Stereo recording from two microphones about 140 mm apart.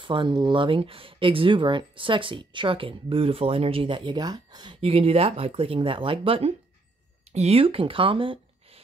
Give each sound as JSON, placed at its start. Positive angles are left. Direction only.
{"t": 0.0, "sound": "speech", "side_deg": -35}